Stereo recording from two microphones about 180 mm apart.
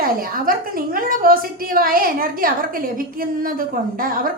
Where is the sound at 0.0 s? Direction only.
55° right (ahead or behind).